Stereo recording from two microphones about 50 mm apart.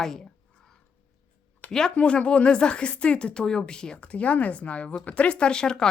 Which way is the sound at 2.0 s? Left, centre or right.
Left.